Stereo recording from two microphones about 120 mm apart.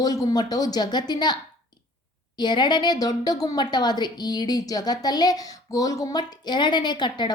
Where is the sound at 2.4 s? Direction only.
40° left (ahead or behind).